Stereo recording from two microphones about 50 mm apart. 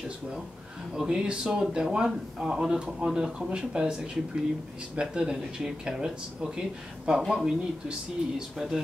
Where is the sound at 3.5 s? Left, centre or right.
Centre.